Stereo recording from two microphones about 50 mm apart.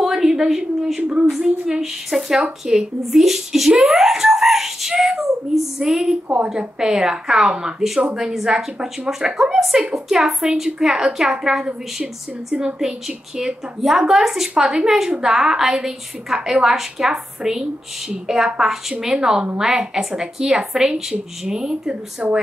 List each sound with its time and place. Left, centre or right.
0.0 s a woman's voice: centre
6.2 s a woman's voice: right
6.5 s a woman's voice: centre